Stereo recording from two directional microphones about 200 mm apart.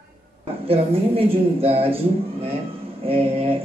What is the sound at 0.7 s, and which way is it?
Speech, 30° right (ahead or behind).